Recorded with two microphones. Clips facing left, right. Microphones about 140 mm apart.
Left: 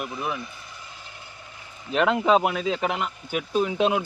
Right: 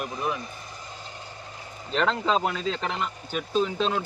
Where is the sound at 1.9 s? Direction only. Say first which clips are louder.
Left 4 dB; 10° left (ahead or behind).